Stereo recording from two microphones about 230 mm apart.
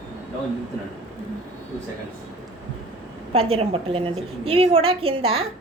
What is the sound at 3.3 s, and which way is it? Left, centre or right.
A woman's voice, right.